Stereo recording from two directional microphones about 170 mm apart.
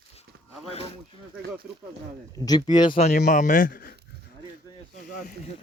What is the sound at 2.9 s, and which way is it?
A man's voice, 45° left (ahead or behind).